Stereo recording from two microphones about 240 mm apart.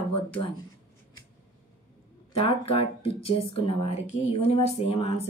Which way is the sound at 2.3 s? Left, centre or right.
Left.